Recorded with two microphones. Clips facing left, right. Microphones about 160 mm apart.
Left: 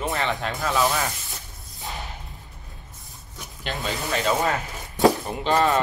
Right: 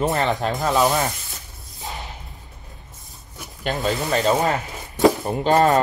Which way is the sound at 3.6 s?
40° right (ahead or behind).